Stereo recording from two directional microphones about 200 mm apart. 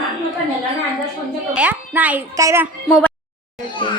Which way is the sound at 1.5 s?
5° right (ahead or behind).